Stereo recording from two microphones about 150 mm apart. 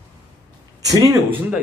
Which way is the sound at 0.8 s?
20° right (ahead or behind).